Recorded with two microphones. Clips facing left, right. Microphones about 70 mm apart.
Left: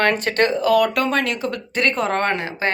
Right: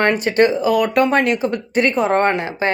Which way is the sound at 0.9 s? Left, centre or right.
Right.